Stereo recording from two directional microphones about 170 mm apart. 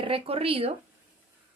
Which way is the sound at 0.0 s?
35° right (ahead or behind).